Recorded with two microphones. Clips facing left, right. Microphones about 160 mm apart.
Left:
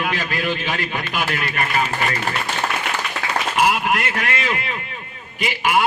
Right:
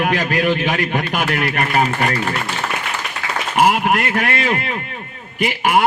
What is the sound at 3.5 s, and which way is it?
A man's voice, 50° right (ahead or behind).